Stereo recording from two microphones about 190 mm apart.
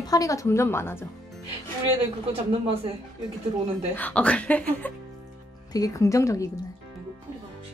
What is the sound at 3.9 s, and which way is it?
A woman's voice, 5° left (ahead or behind).